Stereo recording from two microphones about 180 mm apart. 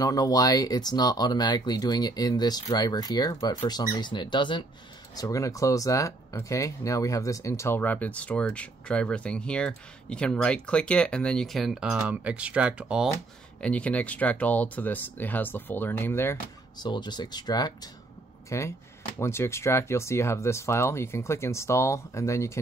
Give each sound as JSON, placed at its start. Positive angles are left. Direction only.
{"t": 0.0, "sound": "speech", "side_deg": 20}
{"t": 13.6, "sound": "speech", "side_deg": 5}
{"t": 16.8, "sound": "speech", "side_deg": 25}